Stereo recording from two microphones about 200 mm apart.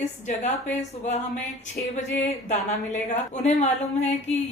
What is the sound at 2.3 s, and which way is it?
A woman's voice, 35° left (ahead or behind).